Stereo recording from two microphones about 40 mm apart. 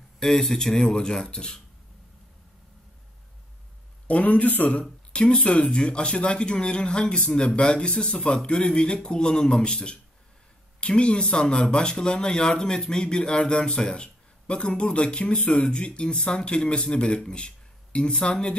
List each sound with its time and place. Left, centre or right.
0.2 s speech: centre
4.1 s speech: left
5.1 s a man's voice: left